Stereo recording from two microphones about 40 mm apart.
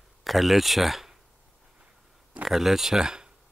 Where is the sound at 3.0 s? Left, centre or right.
Centre.